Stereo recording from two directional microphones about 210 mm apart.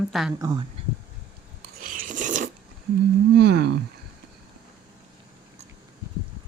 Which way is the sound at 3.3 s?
55° right (ahead or behind).